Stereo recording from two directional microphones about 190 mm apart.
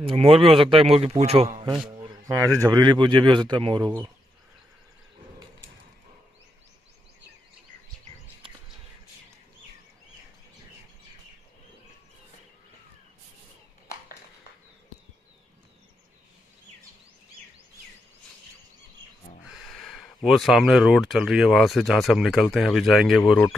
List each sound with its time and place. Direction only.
0.0 s a man's voice: 30° right (ahead or behind)
2.0 s speech: 15° right (ahead or behind)
19.4 s a sound: centre (ahead or behind)
20.2 s speech: centre (ahead or behind)